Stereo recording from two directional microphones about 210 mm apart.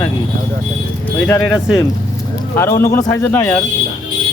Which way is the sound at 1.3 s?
5° left (ahead or behind).